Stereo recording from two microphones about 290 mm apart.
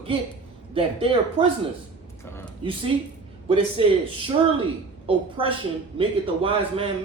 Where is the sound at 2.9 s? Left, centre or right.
Centre.